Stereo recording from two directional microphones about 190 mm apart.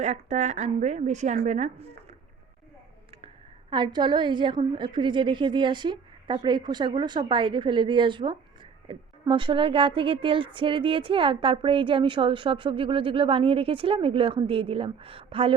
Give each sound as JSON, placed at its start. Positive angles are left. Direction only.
{"t": 0.0, "sound": "a woman's voice", "side_deg": -35}
{"t": 3.7, "sound": "speech", "side_deg": -25}